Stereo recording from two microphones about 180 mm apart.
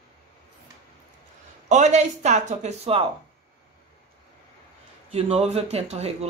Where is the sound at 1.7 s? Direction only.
40° right (ahead or behind).